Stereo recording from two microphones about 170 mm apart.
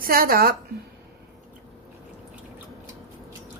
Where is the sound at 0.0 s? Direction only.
60° right (ahead or behind).